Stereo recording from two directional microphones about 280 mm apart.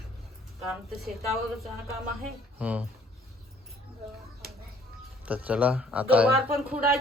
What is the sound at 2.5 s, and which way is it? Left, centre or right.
Speech, centre.